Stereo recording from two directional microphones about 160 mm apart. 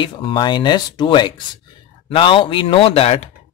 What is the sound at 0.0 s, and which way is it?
Speech, 30° left (ahead or behind).